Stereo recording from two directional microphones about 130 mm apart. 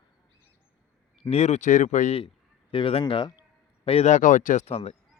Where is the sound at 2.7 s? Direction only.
45° left (ahead or behind).